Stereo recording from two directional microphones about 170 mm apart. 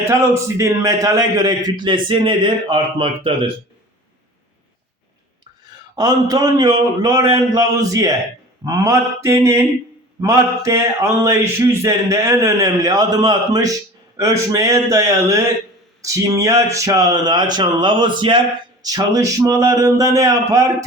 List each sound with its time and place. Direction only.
0.1 s speech: 15° right (ahead or behind)
6.0 s speech: 20° right (ahead or behind)